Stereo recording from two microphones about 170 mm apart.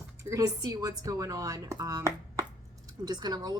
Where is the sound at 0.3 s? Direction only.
20° right (ahead or behind).